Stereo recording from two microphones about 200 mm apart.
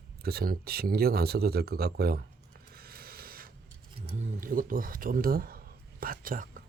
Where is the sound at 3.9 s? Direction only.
35° right (ahead or behind).